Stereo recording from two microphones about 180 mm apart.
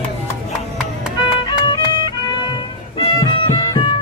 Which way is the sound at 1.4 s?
25° left (ahead or behind).